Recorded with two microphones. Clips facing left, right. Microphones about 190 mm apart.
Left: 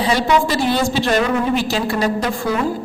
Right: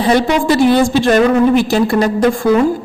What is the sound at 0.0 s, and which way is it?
A woman's voice, 50° right (ahead or behind).